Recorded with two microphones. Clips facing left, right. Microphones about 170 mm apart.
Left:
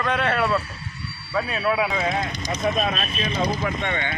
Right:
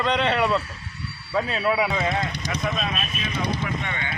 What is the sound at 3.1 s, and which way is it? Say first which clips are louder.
Speech: left 3 dB; 30° left (ahead or behind).